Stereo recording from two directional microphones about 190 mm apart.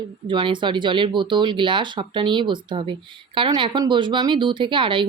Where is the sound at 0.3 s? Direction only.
25° right (ahead or behind).